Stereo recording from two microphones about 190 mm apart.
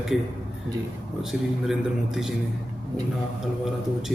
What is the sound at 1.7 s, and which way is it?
Speech, centre (ahead or behind).